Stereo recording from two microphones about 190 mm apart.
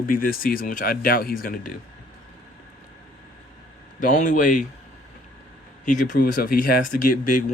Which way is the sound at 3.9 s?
45° left (ahead or behind).